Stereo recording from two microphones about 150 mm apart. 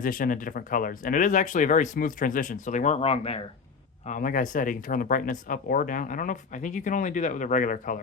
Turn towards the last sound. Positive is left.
turn(degrees=60)  # may be behind; listen again after turning